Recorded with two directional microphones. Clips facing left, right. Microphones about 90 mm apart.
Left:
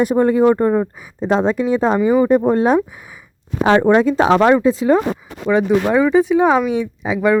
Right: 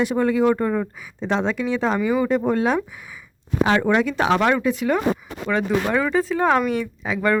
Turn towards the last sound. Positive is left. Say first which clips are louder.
# left 5 dB
turn(degrees=15)  # may be behind; listen again after turning